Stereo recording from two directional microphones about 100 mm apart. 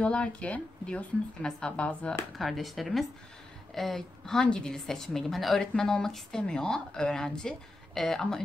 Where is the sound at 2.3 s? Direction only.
Centre (ahead or behind).